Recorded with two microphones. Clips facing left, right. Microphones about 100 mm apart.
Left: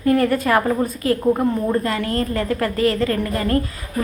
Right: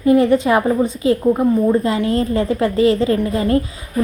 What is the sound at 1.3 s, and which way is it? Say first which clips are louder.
Speech: right 5 dB; 5° right (ahead or behind).